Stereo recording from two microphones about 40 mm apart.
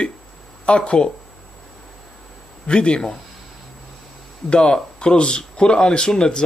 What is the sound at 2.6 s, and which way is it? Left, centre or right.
Speech, left.